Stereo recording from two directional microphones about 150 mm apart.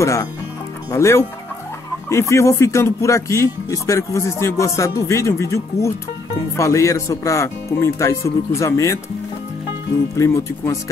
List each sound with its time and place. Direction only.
0.0 s speech: 20° left (ahead or behind)
10.1 s speech: 20° left (ahead or behind)